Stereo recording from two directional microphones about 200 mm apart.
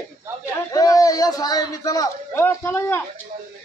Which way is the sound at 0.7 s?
15° left (ahead or behind).